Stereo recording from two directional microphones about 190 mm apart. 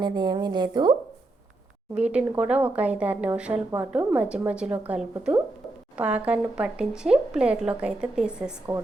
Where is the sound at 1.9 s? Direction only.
5° right (ahead or behind).